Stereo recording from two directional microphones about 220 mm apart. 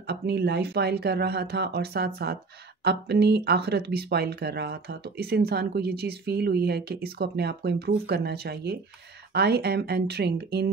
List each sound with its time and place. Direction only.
0.0 s speech: 45° right (ahead or behind)